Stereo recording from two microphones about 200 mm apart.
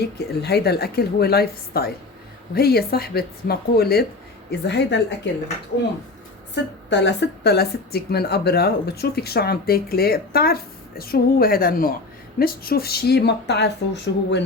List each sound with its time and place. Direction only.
0.4 s speech: 55° left (ahead or behind)
6.5 s speech: 60° left (ahead or behind)